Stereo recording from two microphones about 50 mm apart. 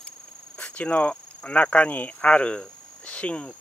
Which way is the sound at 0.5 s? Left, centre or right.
Left.